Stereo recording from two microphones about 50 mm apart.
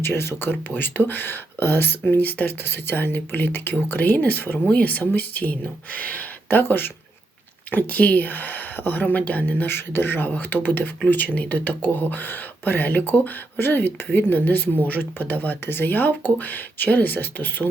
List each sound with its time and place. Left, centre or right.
0.0 s speech: left
6.5 s speech: left
7.7 s speech: left